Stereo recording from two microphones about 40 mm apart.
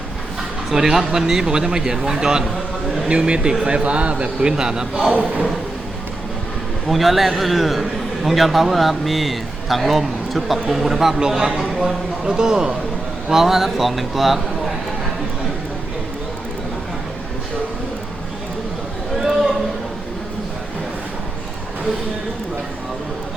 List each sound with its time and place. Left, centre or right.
0.7 s speech: centre
3.1 s a man's voice: right
3.8 s a man's voice: right
5.1 s speech: right
6.8 s a man's voice: centre
19.2 s a sound: centre